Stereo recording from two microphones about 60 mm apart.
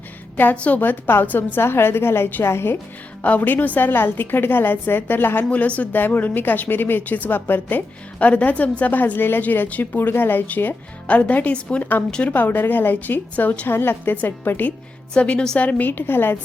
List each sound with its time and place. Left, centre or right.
0.5 s a woman's voice: left
0.8 s a woman's voice: left
3.2 s a woman's voice: left
5.5 s a woman's voice: left
15.2 s a woman's voice: left